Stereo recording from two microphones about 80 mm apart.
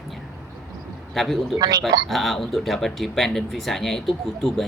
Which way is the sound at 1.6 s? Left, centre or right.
Right.